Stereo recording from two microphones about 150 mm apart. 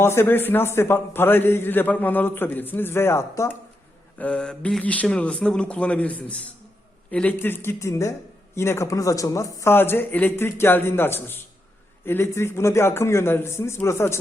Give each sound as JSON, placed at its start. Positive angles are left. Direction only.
{"t": 0.0, "sound": "a man's voice", "side_deg": 15}
{"t": 4.2, "sound": "a man's voice", "side_deg": 5}